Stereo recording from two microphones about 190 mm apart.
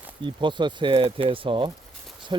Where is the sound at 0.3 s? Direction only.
25° right (ahead or behind).